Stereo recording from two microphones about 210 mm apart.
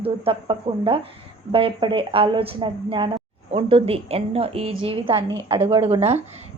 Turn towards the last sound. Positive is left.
turn(degrees=-30)  # may be behind; listen again after turning